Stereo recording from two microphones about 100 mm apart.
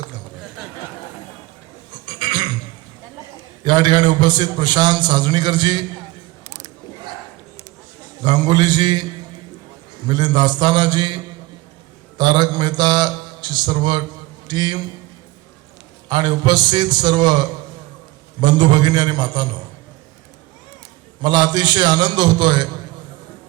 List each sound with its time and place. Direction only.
1.9 s a sound: 50° right (ahead or behind)
3.6 s a man's voice: 50° right (ahead or behind)
6.4 s mechanisms: 35° right (ahead or behind)
8.2 s a man's voice: 50° right (ahead or behind)
10.1 s a man's voice: 50° right (ahead or behind)
16.0 s a man's voice: 50° right (ahead or behind)
21.2 s a man's voice: 45° right (ahead or behind)